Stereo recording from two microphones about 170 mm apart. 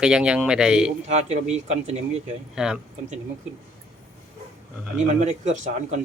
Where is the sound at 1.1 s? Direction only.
40° right (ahead or behind).